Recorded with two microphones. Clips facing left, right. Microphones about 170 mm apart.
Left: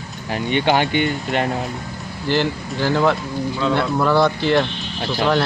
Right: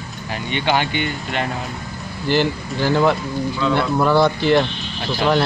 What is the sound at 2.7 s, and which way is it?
A man's voice, 5° right (ahead or behind).